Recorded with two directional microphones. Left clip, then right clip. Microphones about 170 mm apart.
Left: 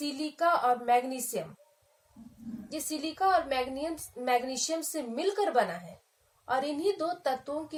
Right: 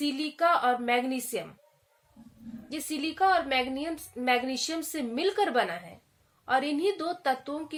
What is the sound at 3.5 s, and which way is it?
A woman's voice, 55° right (ahead or behind).